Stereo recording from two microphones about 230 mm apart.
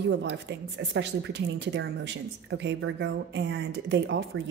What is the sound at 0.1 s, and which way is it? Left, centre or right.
Speech, right.